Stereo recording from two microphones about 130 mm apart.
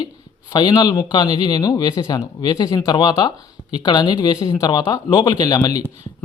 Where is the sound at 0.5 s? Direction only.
35° left (ahead or behind).